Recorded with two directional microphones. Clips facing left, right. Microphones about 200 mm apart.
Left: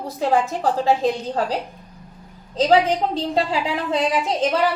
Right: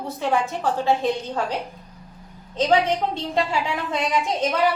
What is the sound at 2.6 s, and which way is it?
A woman's voice, 35° left (ahead or behind).